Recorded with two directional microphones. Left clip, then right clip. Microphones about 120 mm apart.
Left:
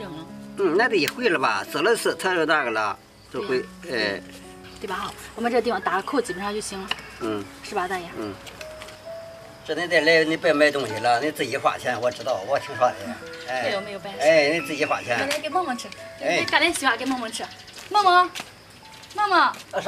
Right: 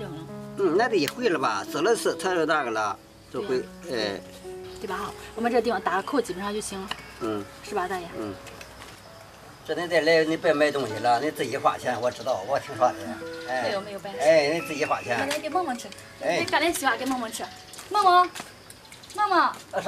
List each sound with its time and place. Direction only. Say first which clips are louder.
0.6 s speech: left 2 dB; centre (ahead or behind)
9.7 s speech: left 3 dB; 10° left (ahead or behind)
14.3 s speech: left 2 dB; 5° left (ahead or behind)
15.2 s speech: left 2 dB; 5° right (ahead or behind)